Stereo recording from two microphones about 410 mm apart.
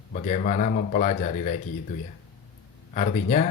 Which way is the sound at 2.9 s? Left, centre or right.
Centre.